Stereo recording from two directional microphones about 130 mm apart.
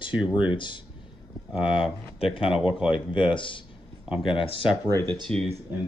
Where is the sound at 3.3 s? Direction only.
40° left (ahead or behind).